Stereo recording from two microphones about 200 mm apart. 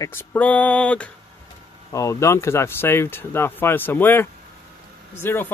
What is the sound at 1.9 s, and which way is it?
Speech, 15° left (ahead or behind).